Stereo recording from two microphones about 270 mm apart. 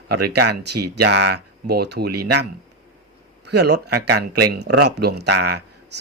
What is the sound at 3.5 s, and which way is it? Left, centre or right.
Speech, right.